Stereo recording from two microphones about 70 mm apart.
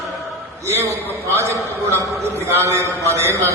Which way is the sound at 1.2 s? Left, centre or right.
Right.